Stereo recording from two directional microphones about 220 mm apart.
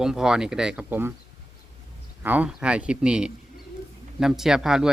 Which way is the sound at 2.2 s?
5° right (ahead or behind).